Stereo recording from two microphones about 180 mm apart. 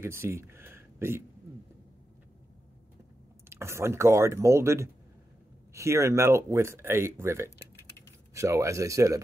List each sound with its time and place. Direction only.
0.0 s speech: 15° right (ahead or behind)
3.4 s speech: 15° right (ahead or behind)